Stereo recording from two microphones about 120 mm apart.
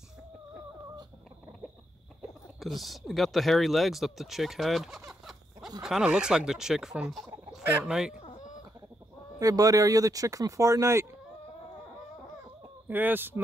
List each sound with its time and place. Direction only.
2.6 s speech: centre (ahead or behind)
7.6 s speech: 10° right (ahead or behind)
9.4 s speech: 30° right (ahead or behind)
12.8 s speech: 15° right (ahead or behind)